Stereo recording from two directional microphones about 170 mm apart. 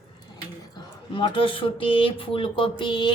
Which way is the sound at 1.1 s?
30° left (ahead or behind).